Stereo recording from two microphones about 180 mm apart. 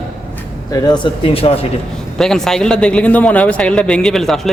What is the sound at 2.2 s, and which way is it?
A man's voice, centre (ahead or behind).